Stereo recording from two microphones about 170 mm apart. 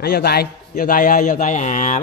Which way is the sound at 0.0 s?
60° left (ahead or behind).